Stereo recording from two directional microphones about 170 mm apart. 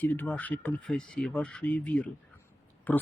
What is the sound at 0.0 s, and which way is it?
A woman's voice, 10° left (ahead or behind).